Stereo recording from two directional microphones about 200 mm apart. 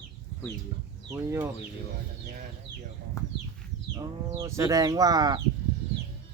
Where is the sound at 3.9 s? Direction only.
20° right (ahead or behind).